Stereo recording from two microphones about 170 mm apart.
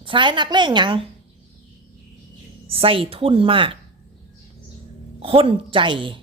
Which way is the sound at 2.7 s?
35° right (ahead or behind).